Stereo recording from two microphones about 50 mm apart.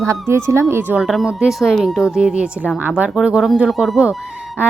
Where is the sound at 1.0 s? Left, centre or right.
Centre.